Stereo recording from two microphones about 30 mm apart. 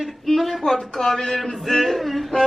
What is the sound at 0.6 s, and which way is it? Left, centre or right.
A man's voice, centre.